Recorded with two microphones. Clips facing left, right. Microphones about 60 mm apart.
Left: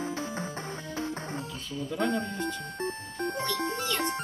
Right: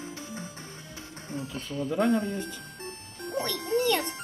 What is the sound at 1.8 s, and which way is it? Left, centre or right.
Speech, centre.